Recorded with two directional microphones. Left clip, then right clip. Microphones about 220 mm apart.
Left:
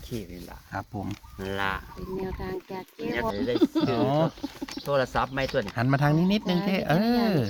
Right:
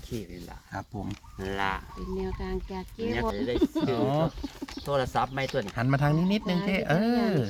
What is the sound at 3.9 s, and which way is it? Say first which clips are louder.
Speech: left 2 dB; 20° left (ahead or behind).